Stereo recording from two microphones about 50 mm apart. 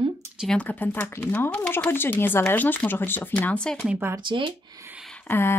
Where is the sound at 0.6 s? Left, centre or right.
Left.